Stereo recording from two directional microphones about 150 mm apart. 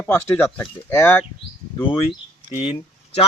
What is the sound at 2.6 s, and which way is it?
Speech, 40° left (ahead or behind).